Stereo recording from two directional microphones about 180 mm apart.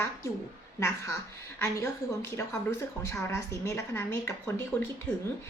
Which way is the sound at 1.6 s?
15° left (ahead or behind).